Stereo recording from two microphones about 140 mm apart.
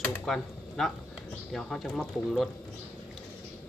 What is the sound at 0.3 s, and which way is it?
Speech, centre (ahead or behind).